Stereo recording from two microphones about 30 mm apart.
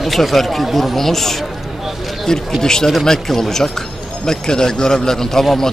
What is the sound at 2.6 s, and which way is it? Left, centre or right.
A man's voice, centre.